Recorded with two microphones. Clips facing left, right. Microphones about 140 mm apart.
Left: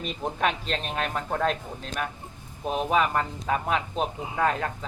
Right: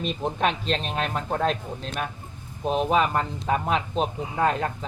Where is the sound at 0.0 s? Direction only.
20° right (ahead or behind).